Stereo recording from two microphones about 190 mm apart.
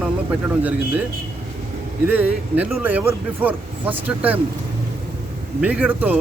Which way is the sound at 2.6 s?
10° right (ahead or behind).